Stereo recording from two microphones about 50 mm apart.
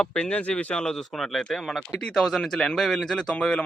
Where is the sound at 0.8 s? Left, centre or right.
Centre.